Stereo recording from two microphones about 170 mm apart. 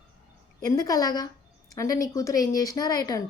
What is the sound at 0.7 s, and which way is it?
Speech, 20° left (ahead or behind).